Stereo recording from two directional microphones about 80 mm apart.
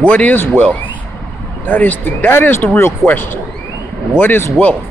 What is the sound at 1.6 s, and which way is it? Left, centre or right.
Speech, left.